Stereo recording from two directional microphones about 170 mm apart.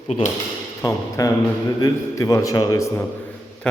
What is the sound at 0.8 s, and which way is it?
A man's voice, 15° left (ahead or behind).